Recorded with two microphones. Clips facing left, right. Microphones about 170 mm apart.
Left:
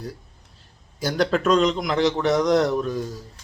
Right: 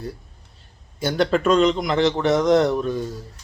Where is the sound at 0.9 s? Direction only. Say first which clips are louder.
Right 2 dB; centre (ahead or behind).